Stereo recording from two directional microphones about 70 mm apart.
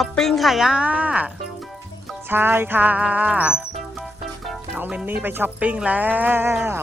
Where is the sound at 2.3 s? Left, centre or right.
Right.